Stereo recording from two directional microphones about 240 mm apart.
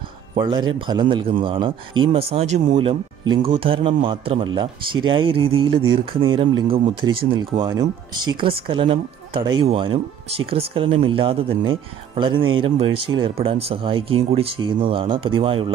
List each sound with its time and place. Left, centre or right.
0.4 s speech: centre